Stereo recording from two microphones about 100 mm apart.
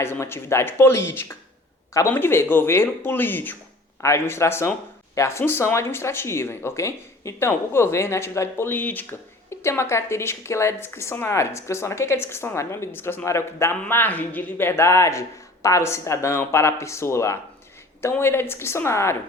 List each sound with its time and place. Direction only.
0.0 s speech: 25° left (ahead or behind)
9.5 s speech: 25° left (ahead or behind)